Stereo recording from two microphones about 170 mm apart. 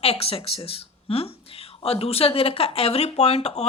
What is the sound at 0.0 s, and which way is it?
Speech, 35° left (ahead or behind).